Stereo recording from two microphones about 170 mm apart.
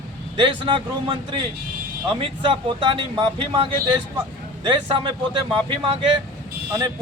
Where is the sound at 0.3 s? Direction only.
30° right (ahead or behind).